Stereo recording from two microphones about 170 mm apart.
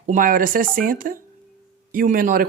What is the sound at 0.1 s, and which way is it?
Speech, 55° right (ahead or behind).